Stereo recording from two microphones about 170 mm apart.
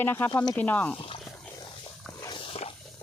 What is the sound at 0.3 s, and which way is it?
Speech, 25° left (ahead or behind).